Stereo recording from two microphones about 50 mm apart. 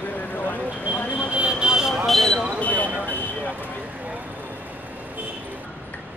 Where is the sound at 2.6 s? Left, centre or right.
Left.